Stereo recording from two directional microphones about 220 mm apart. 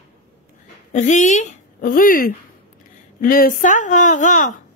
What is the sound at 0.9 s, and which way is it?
A woman's voice, 35° left (ahead or behind).